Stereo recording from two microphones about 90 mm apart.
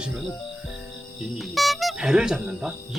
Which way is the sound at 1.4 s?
Centre (ahead or behind).